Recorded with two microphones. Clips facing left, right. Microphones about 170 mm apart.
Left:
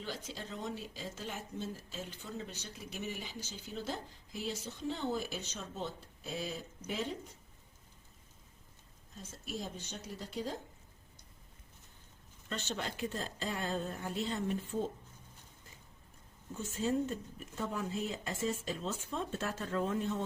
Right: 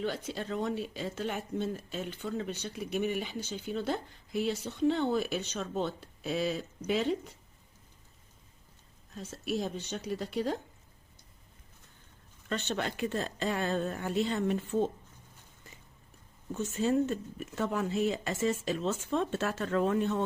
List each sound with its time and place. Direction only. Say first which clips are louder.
0.0 s speech: right 8 dB; 60° right (ahead or behind)
9.1 s speech: right 9 dB; 70° right (ahead or behind)
12.5 s speech: right 6 dB; 65° right (ahead or behind)
16.6 s speech: right 5 dB; 75° right (ahead or behind)